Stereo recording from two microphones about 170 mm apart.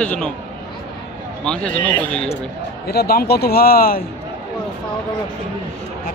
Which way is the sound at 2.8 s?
65° left (ahead or behind).